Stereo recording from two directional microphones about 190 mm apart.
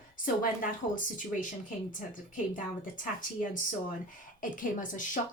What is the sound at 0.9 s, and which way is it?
Speech, 45° left (ahead or behind).